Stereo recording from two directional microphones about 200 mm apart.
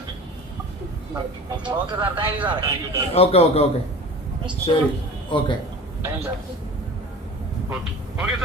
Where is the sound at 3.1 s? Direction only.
30° left (ahead or behind).